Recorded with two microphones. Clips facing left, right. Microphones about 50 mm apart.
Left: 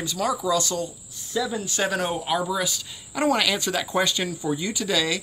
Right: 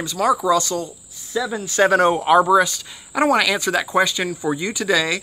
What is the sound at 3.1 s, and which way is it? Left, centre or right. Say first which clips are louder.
Speech: right 5 dB; right.